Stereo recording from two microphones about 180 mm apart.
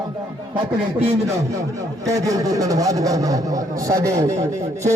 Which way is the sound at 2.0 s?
20° right (ahead or behind).